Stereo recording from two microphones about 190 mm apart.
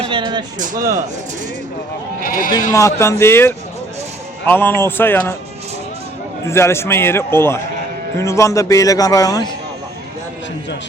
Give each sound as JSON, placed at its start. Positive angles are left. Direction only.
{"t": 0.0, "sound": "speech", "side_deg": -25}
{"t": 0.6, "sound": "speech", "side_deg": -45}
{"t": 2.2, "sound": "speech", "side_deg": 50}
{"t": 2.7, "sound": "a man's voice", "side_deg": 15}
{"t": 6.4, "sound": "a man's voice", "side_deg": 15}